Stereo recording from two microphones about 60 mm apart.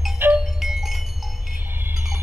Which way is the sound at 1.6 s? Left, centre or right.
Right.